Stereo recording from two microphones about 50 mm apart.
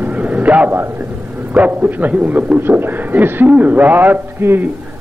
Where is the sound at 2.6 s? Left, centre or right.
Right.